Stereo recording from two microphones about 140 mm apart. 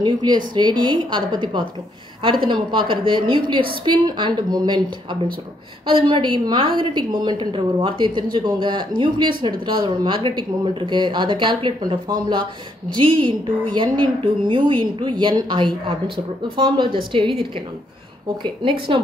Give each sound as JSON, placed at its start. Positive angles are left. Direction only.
{"t": 0.0, "sound": "a woman's voice", "side_deg": -30}
{"t": 5.9, "sound": "a woman's voice", "side_deg": -35}
{"t": 18.4, "sound": "a woman's voice", "side_deg": -35}